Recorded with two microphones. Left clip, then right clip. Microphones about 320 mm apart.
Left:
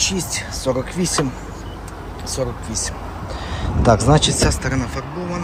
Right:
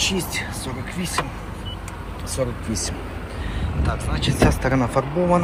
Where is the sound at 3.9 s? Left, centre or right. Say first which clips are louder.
Left 12 dB; centre.